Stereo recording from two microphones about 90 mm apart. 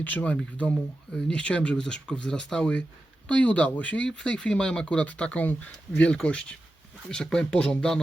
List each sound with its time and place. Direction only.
0.0 s speech: 20° left (ahead or behind)